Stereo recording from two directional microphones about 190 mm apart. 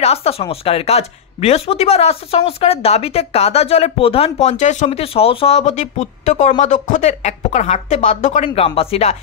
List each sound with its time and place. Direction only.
0.0 s speech: 30° left (ahead or behind)